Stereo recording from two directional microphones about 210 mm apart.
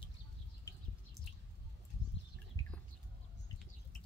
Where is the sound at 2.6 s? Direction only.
15° left (ahead or behind).